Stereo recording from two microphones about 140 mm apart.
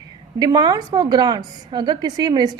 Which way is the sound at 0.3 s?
30° right (ahead or behind).